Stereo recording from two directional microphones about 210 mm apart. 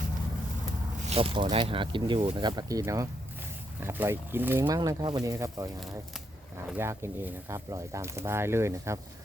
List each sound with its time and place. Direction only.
1.1 s speech: 25° right (ahead or behind)
6.7 s speech: 10° right (ahead or behind)